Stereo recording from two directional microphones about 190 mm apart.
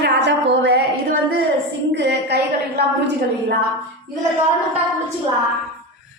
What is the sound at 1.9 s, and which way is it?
A woman's voice, 65° right (ahead or behind).